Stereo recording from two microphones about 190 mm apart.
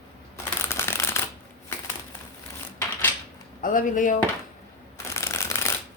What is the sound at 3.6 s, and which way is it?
Speech, 45° left (ahead or behind).